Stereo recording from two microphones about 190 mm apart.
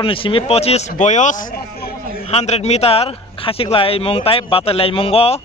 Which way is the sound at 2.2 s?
35° left (ahead or behind).